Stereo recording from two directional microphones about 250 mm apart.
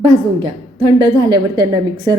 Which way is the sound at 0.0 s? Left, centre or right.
Right.